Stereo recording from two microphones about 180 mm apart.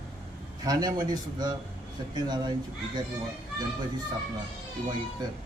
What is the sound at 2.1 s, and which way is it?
Speech, 25° right (ahead or behind).